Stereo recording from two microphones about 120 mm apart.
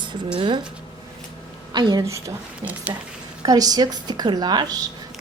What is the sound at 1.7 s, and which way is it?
Speech, 35° right (ahead or behind).